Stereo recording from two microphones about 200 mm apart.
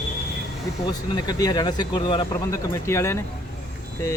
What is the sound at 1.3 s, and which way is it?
Speech, 20° left (ahead or behind).